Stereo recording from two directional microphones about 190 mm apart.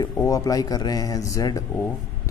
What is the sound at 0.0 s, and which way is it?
Speech, 20° left (ahead or behind).